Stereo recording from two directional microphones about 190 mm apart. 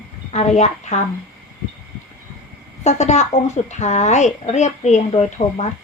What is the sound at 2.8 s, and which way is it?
A child's voice, 35° left (ahead or behind).